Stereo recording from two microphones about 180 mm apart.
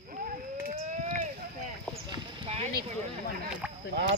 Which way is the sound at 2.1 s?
30° right (ahead or behind).